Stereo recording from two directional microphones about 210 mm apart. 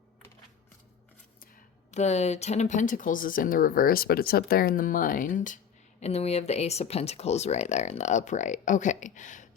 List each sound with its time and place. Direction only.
1.9 s speech: 30° left (ahead or behind)